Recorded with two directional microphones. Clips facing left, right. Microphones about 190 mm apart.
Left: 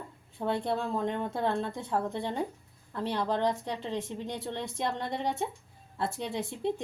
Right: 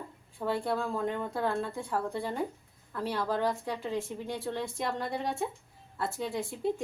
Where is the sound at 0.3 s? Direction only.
20° left (ahead or behind).